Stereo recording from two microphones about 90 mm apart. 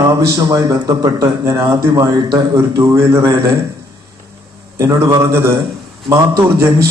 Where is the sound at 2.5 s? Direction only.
35° right (ahead or behind).